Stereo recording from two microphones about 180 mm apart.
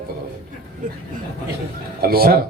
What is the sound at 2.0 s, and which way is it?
Speech, 55° right (ahead or behind).